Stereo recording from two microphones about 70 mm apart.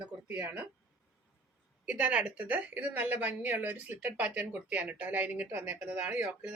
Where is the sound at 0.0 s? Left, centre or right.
Centre.